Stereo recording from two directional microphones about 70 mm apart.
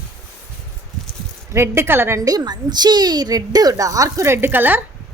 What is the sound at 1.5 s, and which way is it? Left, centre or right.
Speech, right.